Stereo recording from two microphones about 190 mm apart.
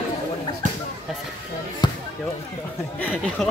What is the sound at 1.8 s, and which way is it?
Basketball bounce, 25° left (ahead or behind).